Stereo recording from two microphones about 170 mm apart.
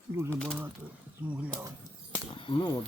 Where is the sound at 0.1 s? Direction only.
15° right (ahead or behind).